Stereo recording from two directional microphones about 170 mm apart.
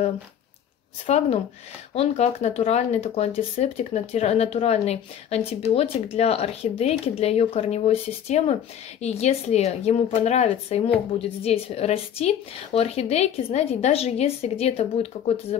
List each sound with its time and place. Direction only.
1.0 s speech: 40° left (ahead or behind)